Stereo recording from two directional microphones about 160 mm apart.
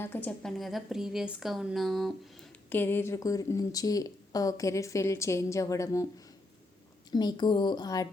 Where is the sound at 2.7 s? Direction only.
15° left (ahead or behind).